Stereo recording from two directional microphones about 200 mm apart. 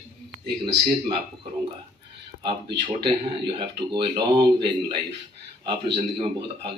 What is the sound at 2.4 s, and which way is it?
Speech, 25° right (ahead or behind).